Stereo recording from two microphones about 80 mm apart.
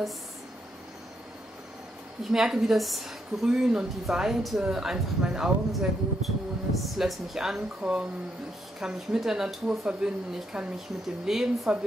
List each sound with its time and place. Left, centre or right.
2.3 s a woman's voice: centre